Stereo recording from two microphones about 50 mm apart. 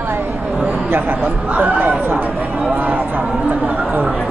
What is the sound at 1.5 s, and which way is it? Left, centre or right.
Speech, right.